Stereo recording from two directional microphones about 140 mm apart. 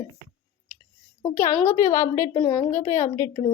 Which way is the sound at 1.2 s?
20° left (ahead or behind).